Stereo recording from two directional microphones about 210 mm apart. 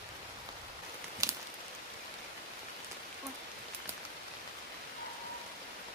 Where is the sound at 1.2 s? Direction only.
15° right (ahead or behind).